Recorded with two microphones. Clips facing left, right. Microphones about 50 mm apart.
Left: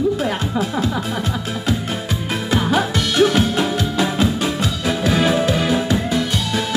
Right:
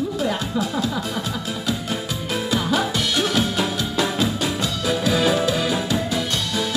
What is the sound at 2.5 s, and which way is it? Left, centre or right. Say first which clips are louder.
Music: left 4 dB; left.